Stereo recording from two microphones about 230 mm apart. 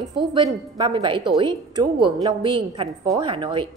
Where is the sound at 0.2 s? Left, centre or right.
Right.